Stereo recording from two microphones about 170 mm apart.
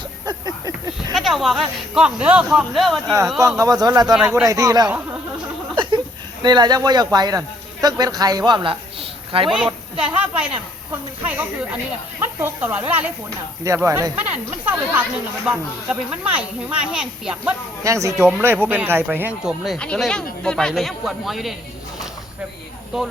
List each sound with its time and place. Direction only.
0.3 s a sound: 25° right (ahead or behind)
1.1 s speech: centre (ahead or behind)
3.6 s a sound: 20° right (ahead or behind)
4.1 s speech: 5° right (ahead or behind)
4.4 s a sound: 20° right (ahead or behind)
6.4 s speech: 25° right (ahead or behind)
9.5 s speech: 5° right (ahead or behind)
17.8 s speech: 20° right (ahead or behind)
19.6 s speech: 5° left (ahead or behind)